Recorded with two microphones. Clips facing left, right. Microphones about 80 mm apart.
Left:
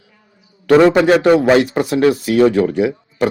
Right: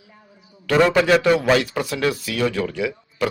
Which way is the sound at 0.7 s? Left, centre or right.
Left.